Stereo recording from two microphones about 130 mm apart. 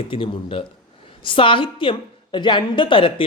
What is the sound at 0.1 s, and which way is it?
A woman's voice, 45° left (ahead or behind).